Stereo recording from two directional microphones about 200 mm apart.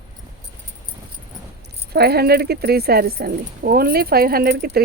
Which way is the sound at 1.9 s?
55° right (ahead or behind).